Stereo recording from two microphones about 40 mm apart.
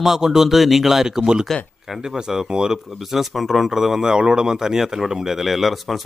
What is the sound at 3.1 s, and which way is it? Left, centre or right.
Speech, centre.